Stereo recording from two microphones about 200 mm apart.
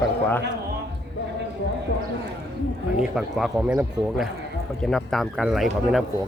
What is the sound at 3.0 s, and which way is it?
A man's voice, centre (ahead or behind).